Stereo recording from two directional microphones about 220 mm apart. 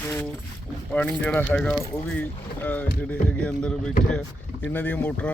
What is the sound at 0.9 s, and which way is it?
Speech, 5° left (ahead or behind).